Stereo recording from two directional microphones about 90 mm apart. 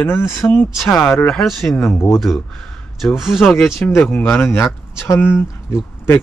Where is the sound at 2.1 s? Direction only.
Centre (ahead or behind).